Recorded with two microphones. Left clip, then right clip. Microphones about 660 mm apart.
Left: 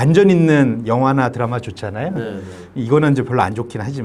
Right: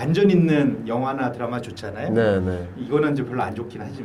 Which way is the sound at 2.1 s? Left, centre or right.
Right.